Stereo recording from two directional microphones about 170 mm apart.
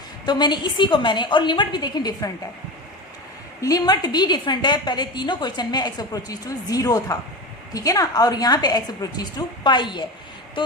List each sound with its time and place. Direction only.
0.3 s a woman's voice: 25° left (ahead or behind)
3.6 s a woman's voice: 20° left (ahead or behind)